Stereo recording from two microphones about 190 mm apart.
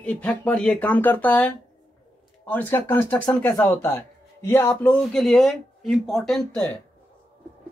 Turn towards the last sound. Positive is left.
turn(degrees=5)  # may be behind; listen again after turning